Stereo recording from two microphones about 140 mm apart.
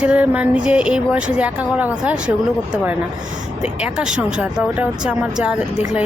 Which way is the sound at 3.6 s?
10° right (ahead or behind).